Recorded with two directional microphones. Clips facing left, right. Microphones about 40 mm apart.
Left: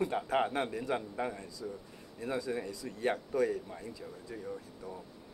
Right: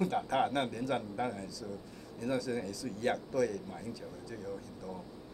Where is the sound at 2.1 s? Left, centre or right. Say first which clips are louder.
Right 1 dB; left.